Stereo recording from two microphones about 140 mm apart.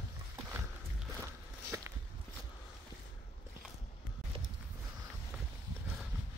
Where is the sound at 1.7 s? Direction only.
20° right (ahead or behind).